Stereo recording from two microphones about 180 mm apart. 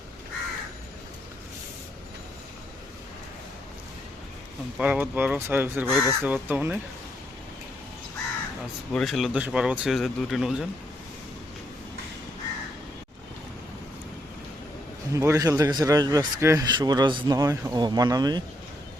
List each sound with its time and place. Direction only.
4.8 s speech: 10° right (ahead or behind)
8.9 s speech: centre (ahead or behind)
15.1 s speech: 15° right (ahead or behind)